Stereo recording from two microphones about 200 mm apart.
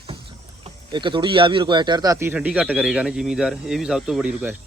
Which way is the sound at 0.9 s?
25° right (ahead or behind).